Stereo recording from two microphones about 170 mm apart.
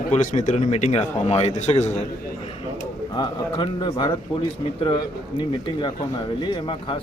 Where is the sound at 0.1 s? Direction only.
45° left (ahead or behind).